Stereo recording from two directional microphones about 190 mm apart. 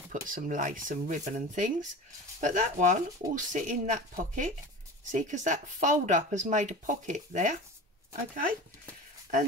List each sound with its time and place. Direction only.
0.3 s speech: 45° right (ahead or behind)